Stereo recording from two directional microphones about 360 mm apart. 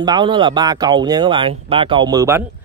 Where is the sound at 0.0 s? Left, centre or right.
Centre.